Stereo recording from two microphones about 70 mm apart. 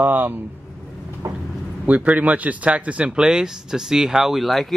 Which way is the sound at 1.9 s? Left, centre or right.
Right.